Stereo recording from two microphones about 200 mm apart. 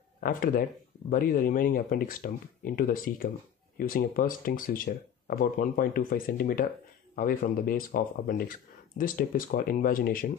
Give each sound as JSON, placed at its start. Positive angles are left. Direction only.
{"t": 0.2, "sound": "speech", "side_deg": 45}